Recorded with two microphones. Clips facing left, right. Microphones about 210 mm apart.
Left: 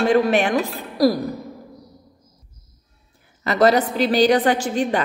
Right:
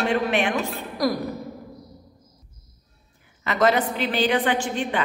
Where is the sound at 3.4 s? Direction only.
35° left (ahead or behind).